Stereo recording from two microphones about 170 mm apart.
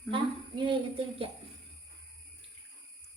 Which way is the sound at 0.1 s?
30° right (ahead or behind).